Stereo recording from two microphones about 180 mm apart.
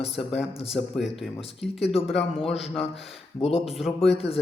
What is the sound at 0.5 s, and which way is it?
Speech, 35° left (ahead or behind).